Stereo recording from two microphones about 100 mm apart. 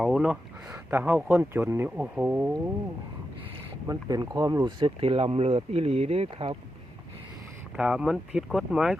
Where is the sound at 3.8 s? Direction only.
40° right (ahead or behind).